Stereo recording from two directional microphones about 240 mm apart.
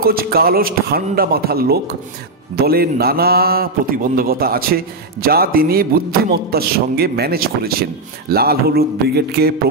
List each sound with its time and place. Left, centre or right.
0.0 s a man's voice: right